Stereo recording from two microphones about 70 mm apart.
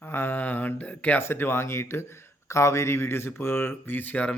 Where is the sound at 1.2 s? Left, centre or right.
Left.